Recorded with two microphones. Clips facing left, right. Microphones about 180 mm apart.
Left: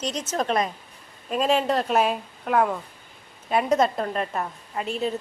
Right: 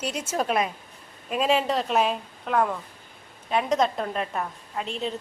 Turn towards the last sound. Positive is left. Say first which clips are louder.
# left 3 dB
turn(degrees=5)  # may be behind; listen again after turning